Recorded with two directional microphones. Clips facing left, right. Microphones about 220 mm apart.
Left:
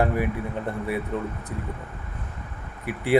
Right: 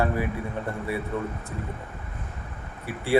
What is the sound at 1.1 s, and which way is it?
Speech, 15° left (ahead or behind).